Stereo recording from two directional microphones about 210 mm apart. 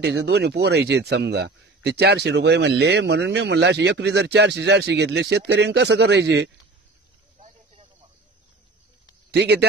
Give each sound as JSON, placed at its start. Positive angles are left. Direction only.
{"t": 0.0, "sound": "a man's voice", "side_deg": -50}
{"t": 7.3, "sound": "a sound", "side_deg": -30}
{"t": 9.3, "sound": "a man's voice", "side_deg": -50}